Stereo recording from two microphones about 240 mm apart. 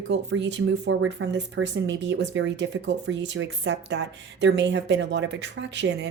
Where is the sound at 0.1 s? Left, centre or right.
Right.